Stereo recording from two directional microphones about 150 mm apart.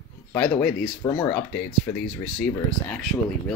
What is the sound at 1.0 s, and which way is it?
Speech, 30° left (ahead or behind).